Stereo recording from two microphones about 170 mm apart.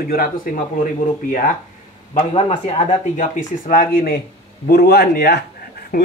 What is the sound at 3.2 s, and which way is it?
Speech, 50° left (ahead or behind).